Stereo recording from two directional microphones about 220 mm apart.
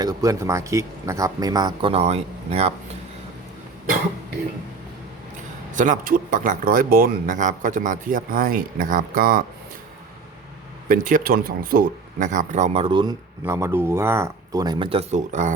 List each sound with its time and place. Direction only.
0.0 s speech: 15° right (ahead or behind)
5.7 s speech: 35° right (ahead or behind)
10.8 s speech: 40° right (ahead or behind); by 13.1 s 20° right (ahead or behind)
13.4 s speech: 10° right (ahead or behind); by 15.5 s 30° right (ahead or behind)